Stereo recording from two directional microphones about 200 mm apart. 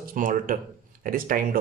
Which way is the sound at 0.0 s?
45° right (ahead or behind).